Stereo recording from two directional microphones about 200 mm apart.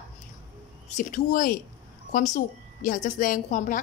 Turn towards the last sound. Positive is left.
turn(degrees=40)  # may be behind; listen again after turning